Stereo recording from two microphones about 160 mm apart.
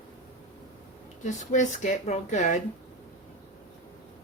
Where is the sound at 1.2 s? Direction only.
50° left (ahead or behind).